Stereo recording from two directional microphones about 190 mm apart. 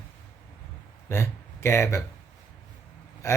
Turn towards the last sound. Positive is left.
turn(degrees=15)  # may be behind; listen again after turning